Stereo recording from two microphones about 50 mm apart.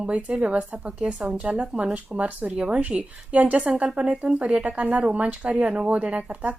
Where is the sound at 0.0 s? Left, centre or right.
Right.